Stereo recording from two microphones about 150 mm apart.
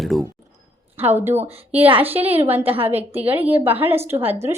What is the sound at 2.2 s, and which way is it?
Speech, 40° right (ahead or behind).